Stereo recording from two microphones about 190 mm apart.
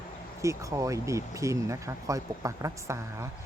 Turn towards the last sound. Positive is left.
turn(degrees=-15)  # may be behind; listen again after turning